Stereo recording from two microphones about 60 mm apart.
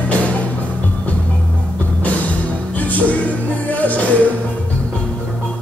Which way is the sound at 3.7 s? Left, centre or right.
Left.